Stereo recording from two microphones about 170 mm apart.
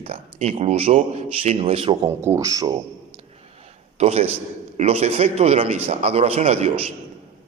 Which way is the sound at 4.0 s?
35° right (ahead or behind).